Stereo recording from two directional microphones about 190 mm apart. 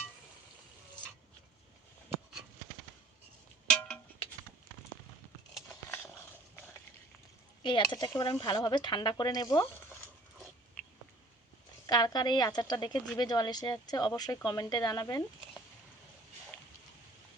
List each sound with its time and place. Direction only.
3.7 s music: 5° left (ahead or behind)
5.6 s a sound: 10° left (ahead or behind)
7.6 s speech: 25° left (ahead or behind)
11.9 s speech: 20° left (ahead or behind)